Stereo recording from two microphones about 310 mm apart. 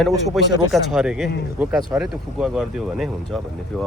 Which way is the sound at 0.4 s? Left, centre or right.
Centre.